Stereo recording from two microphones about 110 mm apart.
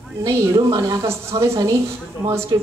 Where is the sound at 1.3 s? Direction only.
35° right (ahead or behind).